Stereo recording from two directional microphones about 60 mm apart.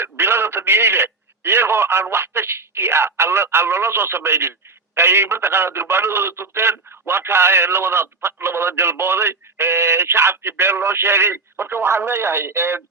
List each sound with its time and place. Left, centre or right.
0.0 s speech: right